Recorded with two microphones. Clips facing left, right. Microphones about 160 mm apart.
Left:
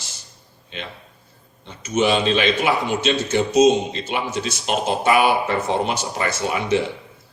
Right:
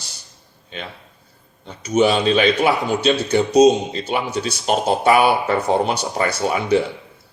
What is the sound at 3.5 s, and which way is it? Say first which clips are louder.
Speech: right 2 dB; 35° right (ahead or behind).